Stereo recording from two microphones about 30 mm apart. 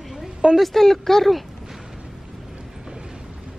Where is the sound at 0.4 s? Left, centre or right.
Right.